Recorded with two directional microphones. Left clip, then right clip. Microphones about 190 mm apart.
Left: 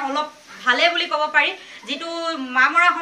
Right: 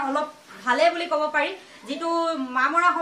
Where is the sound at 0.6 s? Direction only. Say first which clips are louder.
Left 3 dB; 40° right (ahead or behind).